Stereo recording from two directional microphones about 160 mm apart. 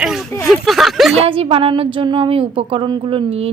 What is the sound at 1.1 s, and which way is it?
A woman's voice, 35° right (ahead or behind).